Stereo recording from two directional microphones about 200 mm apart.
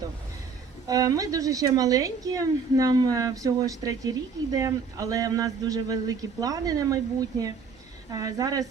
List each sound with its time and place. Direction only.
0.9 s a woman's voice: 20° right (ahead or behind)